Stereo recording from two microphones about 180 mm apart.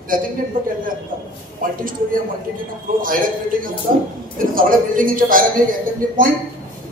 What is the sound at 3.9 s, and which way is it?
Speech, 45° right (ahead or behind).